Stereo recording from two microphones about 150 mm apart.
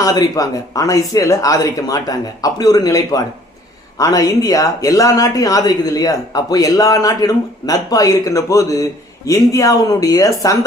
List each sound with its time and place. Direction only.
0.0 s speech: 25° left (ahead or behind)